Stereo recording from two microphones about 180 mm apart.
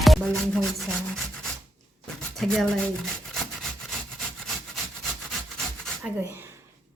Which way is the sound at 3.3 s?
Centre (ahead or behind).